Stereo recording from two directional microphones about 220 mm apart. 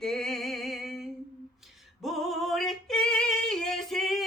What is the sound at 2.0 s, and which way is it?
Female singing, centre (ahead or behind).